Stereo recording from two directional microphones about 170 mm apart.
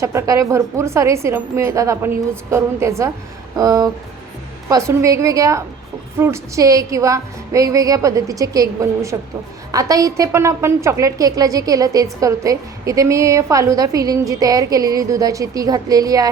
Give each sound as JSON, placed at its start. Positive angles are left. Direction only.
{"t": 0.0, "sound": "a woman's voice", "side_deg": -15}